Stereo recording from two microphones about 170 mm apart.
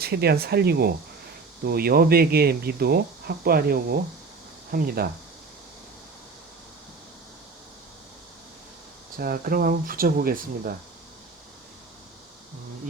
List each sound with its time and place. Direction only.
0.0 s speech: 65° right (ahead or behind)
9.1 s speech: 60° right (ahead or behind)